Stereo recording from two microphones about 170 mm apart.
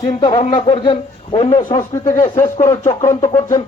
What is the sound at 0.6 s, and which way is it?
A man's voice, 30° left (ahead or behind).